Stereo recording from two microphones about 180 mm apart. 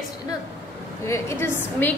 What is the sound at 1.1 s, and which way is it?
Speech, 15° left (ahead or behind).